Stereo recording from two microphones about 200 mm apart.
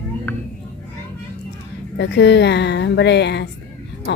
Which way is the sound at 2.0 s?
60° left (ahead or behind).